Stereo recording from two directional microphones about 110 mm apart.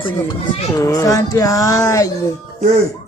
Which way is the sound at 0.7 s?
30° left (ahead or behind).